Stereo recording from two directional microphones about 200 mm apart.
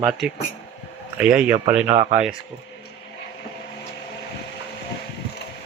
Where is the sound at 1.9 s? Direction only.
35° right (ahead or behind).